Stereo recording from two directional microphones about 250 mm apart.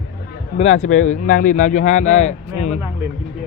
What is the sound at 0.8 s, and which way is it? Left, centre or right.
Speech, left.